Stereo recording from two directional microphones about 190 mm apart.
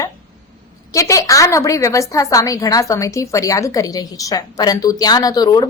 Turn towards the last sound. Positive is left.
turn(degrees=20)  # may be behind; listen again after turning